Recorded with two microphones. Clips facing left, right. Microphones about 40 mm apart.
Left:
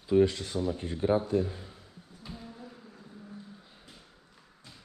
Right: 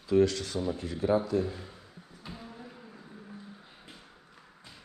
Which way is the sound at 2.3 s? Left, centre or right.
Centre.